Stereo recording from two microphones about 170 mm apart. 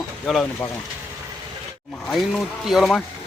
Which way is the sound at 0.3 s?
Centre (ahead or behind).